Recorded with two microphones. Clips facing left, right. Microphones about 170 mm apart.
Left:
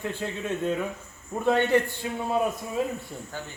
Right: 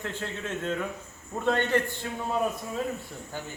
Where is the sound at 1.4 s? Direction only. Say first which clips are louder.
Left 4 dB; 10° left (ahead or behind).